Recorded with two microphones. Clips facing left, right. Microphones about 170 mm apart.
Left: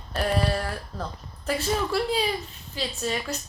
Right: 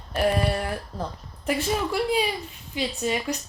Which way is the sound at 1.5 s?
15° right (ahead or behind).